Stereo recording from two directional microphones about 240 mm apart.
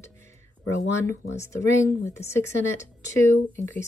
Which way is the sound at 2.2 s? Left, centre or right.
Left.